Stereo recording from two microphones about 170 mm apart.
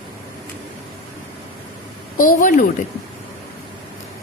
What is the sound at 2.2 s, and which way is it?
Speech, 50° left (ahead or behind).